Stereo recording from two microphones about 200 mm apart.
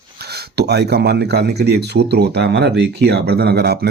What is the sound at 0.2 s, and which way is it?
Speech, 50° right (ahead or behind).